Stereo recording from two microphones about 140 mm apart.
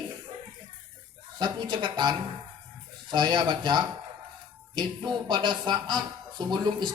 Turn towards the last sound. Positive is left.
turn(degrees=-30)  # may be behind; listen again after turning